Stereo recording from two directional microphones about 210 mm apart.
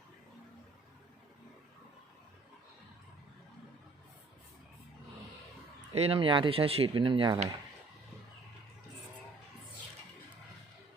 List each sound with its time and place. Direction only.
5.9 s speech: 30° right (ahead or behind)